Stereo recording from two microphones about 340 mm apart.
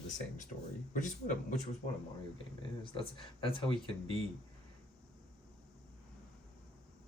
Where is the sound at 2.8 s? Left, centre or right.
Centre.